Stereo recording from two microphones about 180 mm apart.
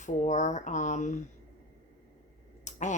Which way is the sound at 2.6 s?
40° left (ahead or behind).